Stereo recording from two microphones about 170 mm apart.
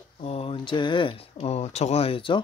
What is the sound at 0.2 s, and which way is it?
Speech, 35° left (ahead or behind).